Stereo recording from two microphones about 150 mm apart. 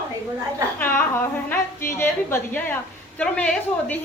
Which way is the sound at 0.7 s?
15° left (ahead or behind).